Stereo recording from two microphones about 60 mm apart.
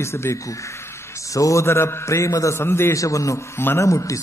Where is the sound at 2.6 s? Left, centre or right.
Left.